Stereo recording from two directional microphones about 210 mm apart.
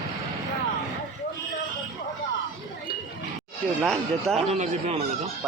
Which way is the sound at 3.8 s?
Centre (ahead or behind).